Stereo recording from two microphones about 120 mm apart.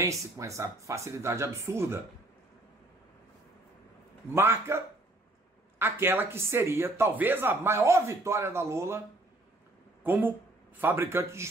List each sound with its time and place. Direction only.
0.0 s a man's voice: 25° right (ahead or behind)
4.3 s a man's voice: 20° right (ahead or behind)
10.0 s a man's voice: 15° right (ahead or behind)